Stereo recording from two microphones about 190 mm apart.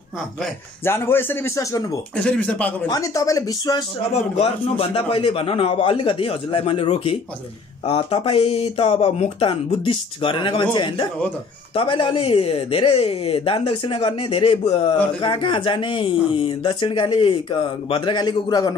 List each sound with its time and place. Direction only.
0.4 s speech: 10° left (ahead or behind)
2.1 s speech: 5° left (ahead or behind)
2.9 s speech: 15° left (ahead or behind)
4.4 s speech: 30° left (ahead or behind)